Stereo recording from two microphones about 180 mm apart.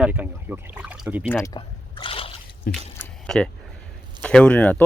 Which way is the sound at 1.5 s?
30° left (ahead or behind).